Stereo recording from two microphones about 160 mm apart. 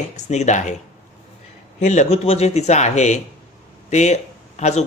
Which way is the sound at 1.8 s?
45° left (ahead or behind).